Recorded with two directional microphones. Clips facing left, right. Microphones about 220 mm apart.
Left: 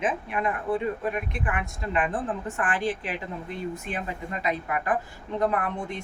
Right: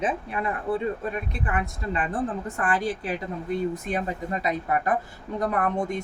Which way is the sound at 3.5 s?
40° right (ahead or behind).